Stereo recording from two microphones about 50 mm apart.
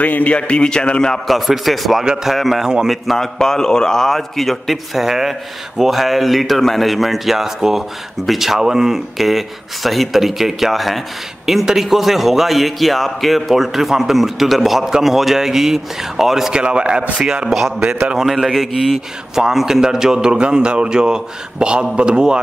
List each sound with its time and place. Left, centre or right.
0.0 s a man's voice: left
0.4 s a man's voice: left
1.1 s a man's voice: centre
3.3 s a man's voice: centre
16.5 s a man's voice: centre
17.5 s a man's voice: centre